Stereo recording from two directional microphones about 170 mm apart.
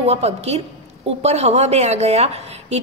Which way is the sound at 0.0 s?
35° right (ahead or behind).